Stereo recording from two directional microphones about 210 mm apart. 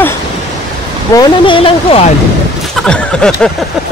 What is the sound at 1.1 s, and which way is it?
Speech, 20° left (ahead or behind).